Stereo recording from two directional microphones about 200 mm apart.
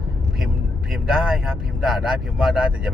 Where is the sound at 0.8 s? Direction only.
5° right (ahead or behind).